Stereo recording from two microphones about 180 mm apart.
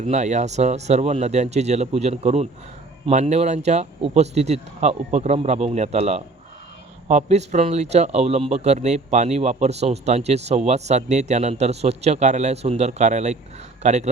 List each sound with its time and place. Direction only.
0.0 s speech: 40° right (ahead or behind)